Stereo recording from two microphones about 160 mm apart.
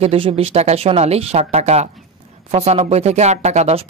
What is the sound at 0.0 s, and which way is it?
Speech, 35° right (ahead or behind).